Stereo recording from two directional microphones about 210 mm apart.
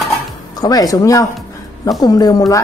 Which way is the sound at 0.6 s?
20° left (ahead or behind).